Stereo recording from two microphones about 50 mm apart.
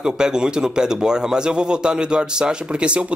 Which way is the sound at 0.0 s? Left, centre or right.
Centre.